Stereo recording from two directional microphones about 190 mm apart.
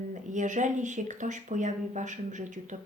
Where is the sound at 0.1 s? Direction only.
40° right (ahead or behind).